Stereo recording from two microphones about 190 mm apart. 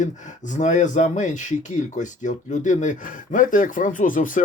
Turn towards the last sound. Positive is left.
turn(degrees=45)  # may be behind; listen again after turning